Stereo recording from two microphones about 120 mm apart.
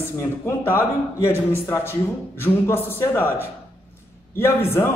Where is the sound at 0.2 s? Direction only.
20° left (ahead or behind).